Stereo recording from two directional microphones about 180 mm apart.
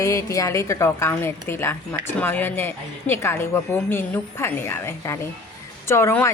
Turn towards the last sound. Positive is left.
turn(degrees=15)  # may be behind; listen again after turning